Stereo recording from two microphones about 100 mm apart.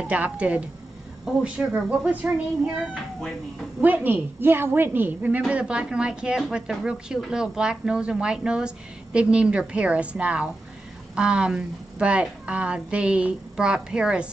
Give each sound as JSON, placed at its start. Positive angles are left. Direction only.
{"t": 0.0, "sound": "a woman's voice", "side_deg": -15}
{"t": 2.2, "sound": "a woman's voice", "side_deg": -15}